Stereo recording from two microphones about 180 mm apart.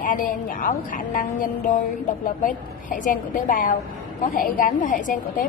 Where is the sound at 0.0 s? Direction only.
45° left (ahead or behind).